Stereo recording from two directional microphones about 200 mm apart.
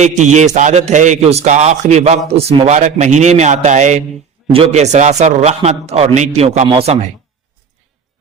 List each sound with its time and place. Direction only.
0.0 s a man's voice: 35° right (ahead or behind)